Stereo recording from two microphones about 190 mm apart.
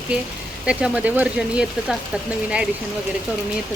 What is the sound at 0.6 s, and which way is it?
Speech, 5° right (ahead or behind).